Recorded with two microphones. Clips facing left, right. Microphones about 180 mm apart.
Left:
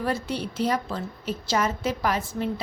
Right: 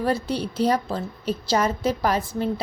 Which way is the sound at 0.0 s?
35° right (ahead or behind).